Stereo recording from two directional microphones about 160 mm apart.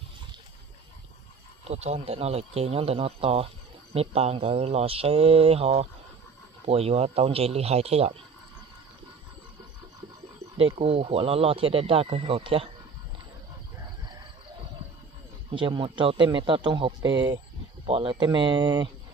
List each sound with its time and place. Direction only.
1.6 s speech: 40° right (ahead or behind)
10.6 s speech: 35° right (ahead or behind)
15.5 s speech: 30° right (ahead or behind)